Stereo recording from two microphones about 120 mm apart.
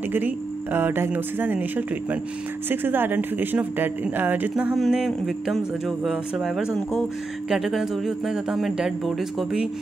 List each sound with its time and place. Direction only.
0.7 s speech: 15° right (ahead or behind)
4.7 s speech: centre (ahead or behind)